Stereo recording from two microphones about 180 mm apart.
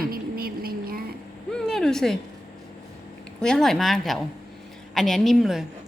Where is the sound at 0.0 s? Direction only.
55° right (ahead or behind).